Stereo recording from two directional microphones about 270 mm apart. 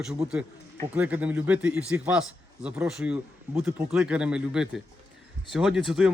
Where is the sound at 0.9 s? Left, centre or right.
Centre.